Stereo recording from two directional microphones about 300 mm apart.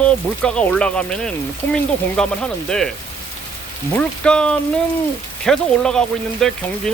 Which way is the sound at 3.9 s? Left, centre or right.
Centre.